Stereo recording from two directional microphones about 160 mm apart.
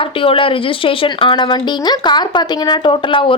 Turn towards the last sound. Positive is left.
turn(degrees=30)  # may be behind; listen again after turning